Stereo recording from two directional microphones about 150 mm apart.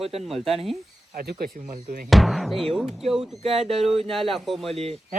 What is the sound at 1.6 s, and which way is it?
Speech, 55° right (ahead or behind).